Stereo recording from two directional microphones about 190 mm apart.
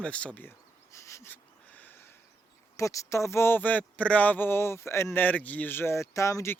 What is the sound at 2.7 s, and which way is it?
Speech, 15° left (ahead or behind).